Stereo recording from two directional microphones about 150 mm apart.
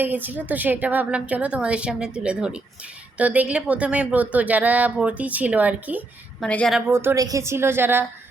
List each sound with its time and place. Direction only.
0.0 s a woman's voice: 10° right (ahead or behind)
6.4 s speech: 5° left (ahead or behind)
6.7 s a woman's voice: 15° right (ahead or behind)